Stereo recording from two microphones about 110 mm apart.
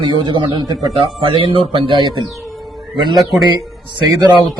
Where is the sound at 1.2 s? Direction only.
55° right (ahead or behind).